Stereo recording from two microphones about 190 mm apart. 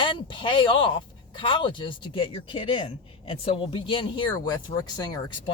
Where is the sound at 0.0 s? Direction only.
25° left (ahead or behind).